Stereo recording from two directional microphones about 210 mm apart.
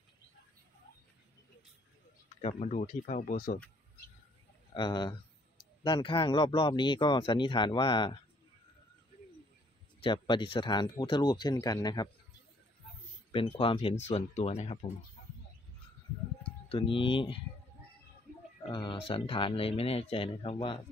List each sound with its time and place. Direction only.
2.4 s speech: 30° left (ahead or behind)
4.7 s speech: 20° left (ahead or behind)
10.0 s speech: 20° left (ahead or behind)
13.3 s speech: 25° left (ahead or behind)
16.7 s speech: 25° left (ahead or behind)
18.7 s speech: 20° left (ahead or behind)